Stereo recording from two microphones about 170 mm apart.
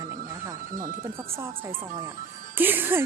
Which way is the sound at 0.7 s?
50° right (ahead or behind).